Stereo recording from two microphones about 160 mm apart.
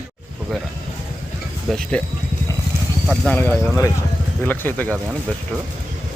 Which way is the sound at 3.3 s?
15° left (ahead or behind).